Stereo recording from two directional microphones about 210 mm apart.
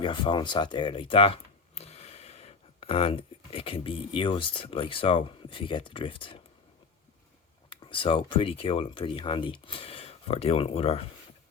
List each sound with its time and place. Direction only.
0.0 s speech: 20° left (ahead or behind)
7.7 s speech: 25° left (ahead or behind)